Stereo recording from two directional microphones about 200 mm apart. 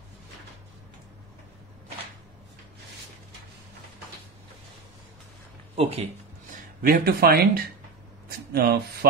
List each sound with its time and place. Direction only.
5.8 s speech: 30° right (ahead or behind)
6.8 s speech: 50° right (ahead or behind)
8.3 s a sound: 50° right (ahead or behind)